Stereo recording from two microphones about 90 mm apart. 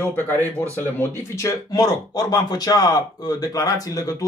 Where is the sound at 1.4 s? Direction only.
40° left (ahead or behind).